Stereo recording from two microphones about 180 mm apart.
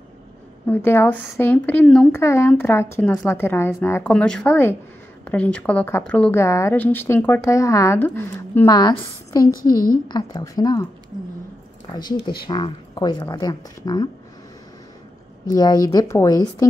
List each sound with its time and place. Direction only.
0.7 s a woman's voice: 10° left (ahead or behind)
11.9 s speech: 20° left (ahead or behind)
15.5 s speech: 25° left (ahead or behind)